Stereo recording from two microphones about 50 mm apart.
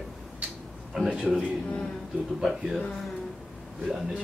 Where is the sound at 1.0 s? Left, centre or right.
Centre.